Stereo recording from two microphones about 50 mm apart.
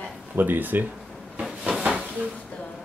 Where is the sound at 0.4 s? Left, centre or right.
Right.